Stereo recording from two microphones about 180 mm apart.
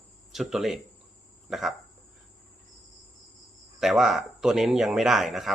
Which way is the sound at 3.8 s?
Centre (ahead or behind).